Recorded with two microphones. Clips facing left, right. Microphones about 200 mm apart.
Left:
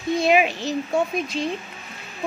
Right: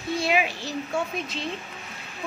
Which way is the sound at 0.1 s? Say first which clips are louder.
Left 6 dB; 20° left (ahead or behind).